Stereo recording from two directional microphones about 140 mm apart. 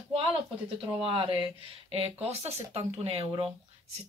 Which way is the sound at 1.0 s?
40° right (ahead or behind).